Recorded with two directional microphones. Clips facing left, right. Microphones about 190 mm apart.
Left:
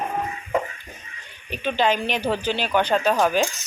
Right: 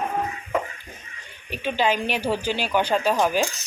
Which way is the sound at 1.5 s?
10° right (ahead or behind).